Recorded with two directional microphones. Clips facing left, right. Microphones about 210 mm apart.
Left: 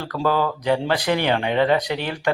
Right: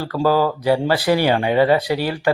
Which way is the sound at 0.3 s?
35° right (ahead or behind).